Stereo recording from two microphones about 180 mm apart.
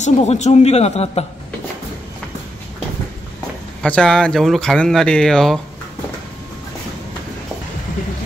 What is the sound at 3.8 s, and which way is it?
Speech, 5° left (ahead or behind).